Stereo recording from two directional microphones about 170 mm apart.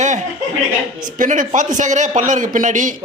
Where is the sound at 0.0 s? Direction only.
45° right (ahead or behind).